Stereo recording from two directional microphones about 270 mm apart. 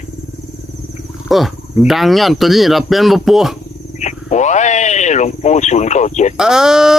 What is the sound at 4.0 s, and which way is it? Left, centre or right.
Speech, left.